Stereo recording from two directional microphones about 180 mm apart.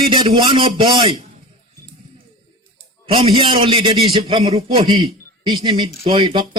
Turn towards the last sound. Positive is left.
turn(degrees=-30)  # may be behind; listen again after turning